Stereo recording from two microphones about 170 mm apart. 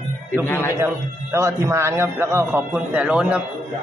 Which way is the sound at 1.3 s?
15° right (ahead or behind).